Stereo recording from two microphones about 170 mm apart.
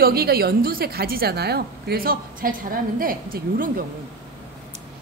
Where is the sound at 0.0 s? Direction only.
65° right (ahead or behind).